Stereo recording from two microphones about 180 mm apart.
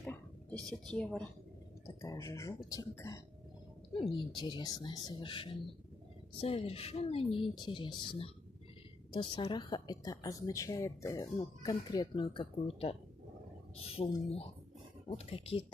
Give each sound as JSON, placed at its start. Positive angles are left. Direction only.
{"t": 0.0, "sound": "a woman's voice", "side_deg": 10}
{"t": 1.9, "sound": "speech", "side_deg": 15}
{"t": 4.4, "sound": "a woman's voice", "side_deg": 25}